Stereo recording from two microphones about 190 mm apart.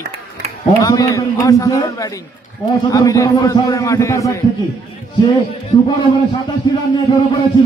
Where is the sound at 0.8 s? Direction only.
20° left (ahead or behind).